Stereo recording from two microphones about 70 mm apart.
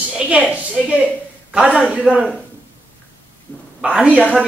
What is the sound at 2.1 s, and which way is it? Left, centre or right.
Speech, centre.